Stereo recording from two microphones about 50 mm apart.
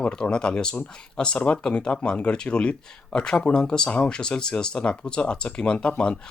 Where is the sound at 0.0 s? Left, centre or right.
Centre.